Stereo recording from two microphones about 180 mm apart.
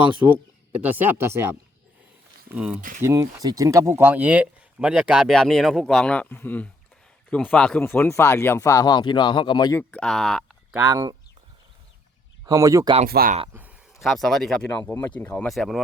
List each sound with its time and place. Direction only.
0.3 s speech: 10° right (ahead or behind)
2.6 s speech: 5° right (ahead or behind); by 9.8 s 20° left (ahead or behind)
9.9 s speech: 5° left (ahead or behind)
10.8 s speech: 20° right (ahead or behind)
12.5 s speech: 20° right (ahead or behind)
13.1 s speech: 60° right (ahead or behind)
13.5 s a sound: 10° right (ahead or behind)
14.0 s speech: centre (ahead or behind)